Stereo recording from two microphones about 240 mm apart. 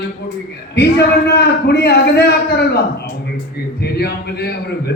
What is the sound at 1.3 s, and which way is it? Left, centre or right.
A man's voice, left.